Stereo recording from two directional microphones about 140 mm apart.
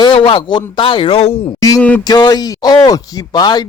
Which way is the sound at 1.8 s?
10° left (ahead or behind).